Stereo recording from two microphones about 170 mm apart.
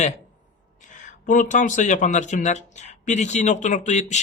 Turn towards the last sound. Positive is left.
turn(degrees=45)  # may be behind; listen again after turning